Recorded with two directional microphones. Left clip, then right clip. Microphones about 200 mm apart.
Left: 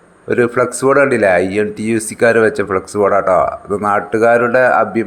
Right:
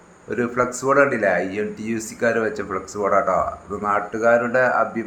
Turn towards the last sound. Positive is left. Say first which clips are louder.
# left 7 dB
turn(degrees=35)  # may be behind; listen again after turning